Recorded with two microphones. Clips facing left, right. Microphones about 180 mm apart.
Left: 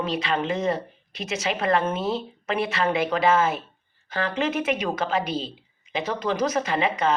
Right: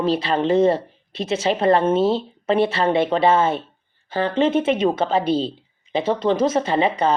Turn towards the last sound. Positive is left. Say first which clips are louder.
# right 4 dB
turn(degrees=-30)  # may be behind; listen again after turning